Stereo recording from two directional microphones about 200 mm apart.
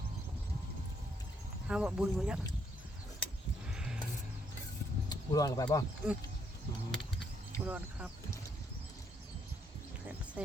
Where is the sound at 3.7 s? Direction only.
5° right (ahead or behind).